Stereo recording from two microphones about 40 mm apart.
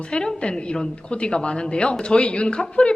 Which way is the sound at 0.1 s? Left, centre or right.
Left.